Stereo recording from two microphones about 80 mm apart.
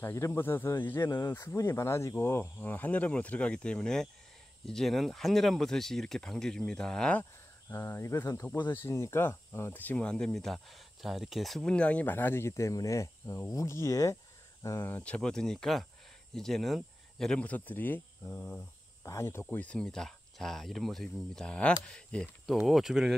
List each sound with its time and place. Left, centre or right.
0.0 s speech: left; by 7.2 s centre
7.7 s speech: left; by 11.7 s centre
11.7 s speech: centre; by 14.1 s left
14.8 s speech: left
15.0 s speech: centre
17.4 s speech: centre
19.5 s speech: centre
22.7 s speech: centre